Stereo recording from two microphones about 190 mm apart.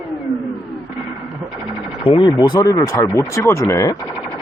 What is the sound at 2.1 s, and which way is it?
Speech, 25° left (ahead or behind).